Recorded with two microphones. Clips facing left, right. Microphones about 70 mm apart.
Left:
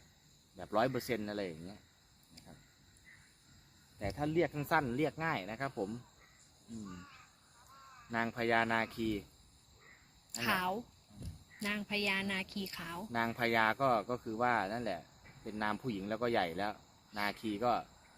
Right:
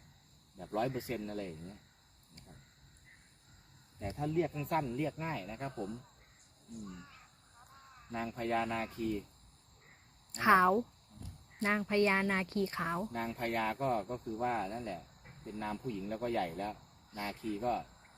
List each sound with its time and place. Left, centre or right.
0.6 s speech: left
4.2 s speech: left
8.1 s speech: left
10.3 s speech: right
13.1 s speech: left